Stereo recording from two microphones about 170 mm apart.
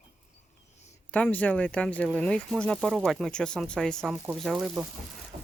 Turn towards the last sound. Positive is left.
turn(degrees=-5)  # may be behind; listen again after turning